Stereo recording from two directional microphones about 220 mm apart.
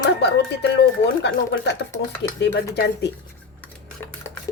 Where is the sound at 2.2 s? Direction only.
50° left (ahead or behind).